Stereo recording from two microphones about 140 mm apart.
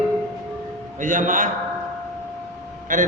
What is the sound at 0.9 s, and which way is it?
Speech, 70° right (ahead or behind).